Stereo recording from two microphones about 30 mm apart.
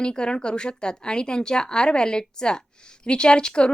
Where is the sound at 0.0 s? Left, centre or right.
Left.